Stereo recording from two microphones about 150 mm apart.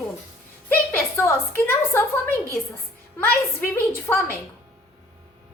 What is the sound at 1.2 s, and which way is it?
A woman's voice, 15° left (ahead or behind).